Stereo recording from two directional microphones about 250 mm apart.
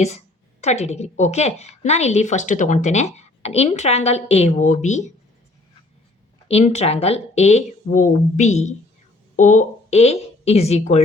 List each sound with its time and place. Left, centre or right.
0.6 s a woman's voice: left
6.5 s a woman's voice: left